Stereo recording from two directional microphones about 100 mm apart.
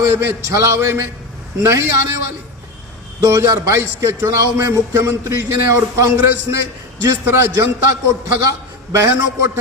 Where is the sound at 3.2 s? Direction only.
35° right (ahead or behind).